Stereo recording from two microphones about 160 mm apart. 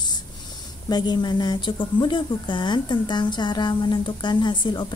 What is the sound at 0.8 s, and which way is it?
Speech, 25° left (ahead or behind).